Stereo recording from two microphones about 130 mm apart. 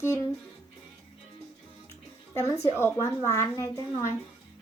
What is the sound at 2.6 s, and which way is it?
A woman's voice, 20° left (ahead or behind).